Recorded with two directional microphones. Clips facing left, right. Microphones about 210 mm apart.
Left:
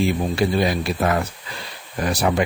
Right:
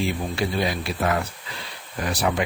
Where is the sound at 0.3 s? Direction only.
40° left (ahead or behind).